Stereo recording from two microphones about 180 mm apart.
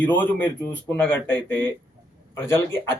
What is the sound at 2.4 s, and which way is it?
Speech, 15° left (ahead or behind).